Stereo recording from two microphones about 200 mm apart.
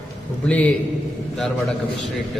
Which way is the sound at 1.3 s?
Centre (ahead or behind).